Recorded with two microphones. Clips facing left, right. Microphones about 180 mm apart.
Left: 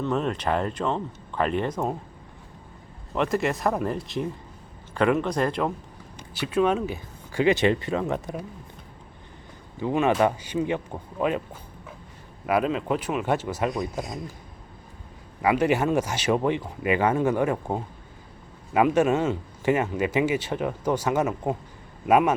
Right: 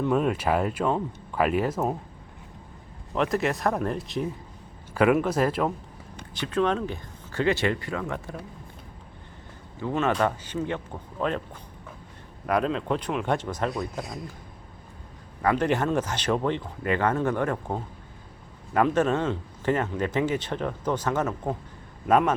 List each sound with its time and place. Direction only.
0.0 s speech: 10° right (ahead or behind)
3.1 s speech: centre (ahead or behind)
6.3 s speech: 10° left (ahead or behind)
9.8 s speech: 15° left (ahead or behind)
12.5 s speech: 5° left (ahead or behind)
15.4 s speech: 10° left (ahead or behind)